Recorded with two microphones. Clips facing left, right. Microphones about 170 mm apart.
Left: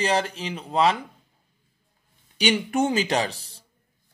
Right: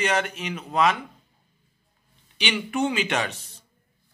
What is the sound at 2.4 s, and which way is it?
Speech, 45° left (ahead or behind).